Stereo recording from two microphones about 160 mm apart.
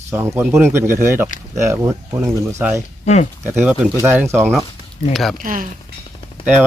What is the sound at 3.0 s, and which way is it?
Speech, 45° left (ahead or behind).